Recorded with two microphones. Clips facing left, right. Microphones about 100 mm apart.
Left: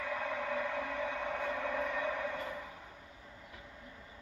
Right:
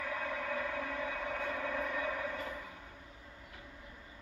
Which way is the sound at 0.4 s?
15° left (ahead or behind).